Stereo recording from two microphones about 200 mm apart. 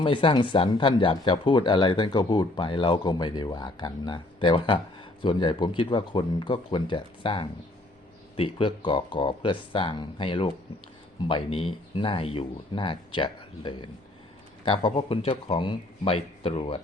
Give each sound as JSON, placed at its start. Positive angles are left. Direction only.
{"t": 0.0, "sound": "speech", "side_deg": 25}